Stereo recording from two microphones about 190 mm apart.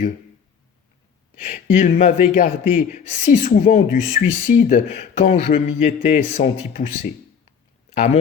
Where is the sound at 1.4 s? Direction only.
45° left (ahead or behind).